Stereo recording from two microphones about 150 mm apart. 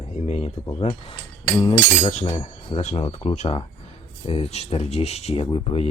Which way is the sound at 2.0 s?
50° left (ahead or behind).